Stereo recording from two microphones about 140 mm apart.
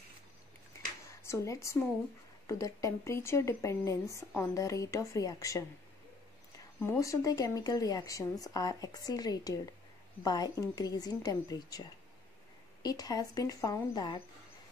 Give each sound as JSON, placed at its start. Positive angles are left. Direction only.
{"t": 1.0, "sound": "a sound", "side_deg": 20}
{"t": 2.4, "sound": "a woman's voice", "side_deg": 20}
{"t": 6.8, "sound": "a woman's voice", "side_deg": 20}